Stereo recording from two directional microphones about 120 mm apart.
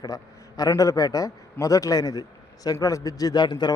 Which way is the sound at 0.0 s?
30° left (ahead or behind).